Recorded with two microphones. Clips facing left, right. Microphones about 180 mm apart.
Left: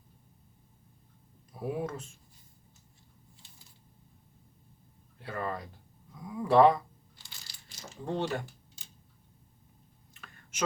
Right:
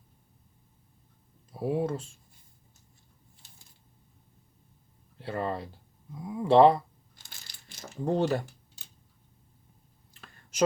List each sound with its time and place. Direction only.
1.5 s speech: 30° right (ahead or behind)
5.1 s speech: 30° right (ahead or behind)
7.2 s crumpling: 50° right (ahead or behind)
10.2 s a sound: 30° right (ahead or behind)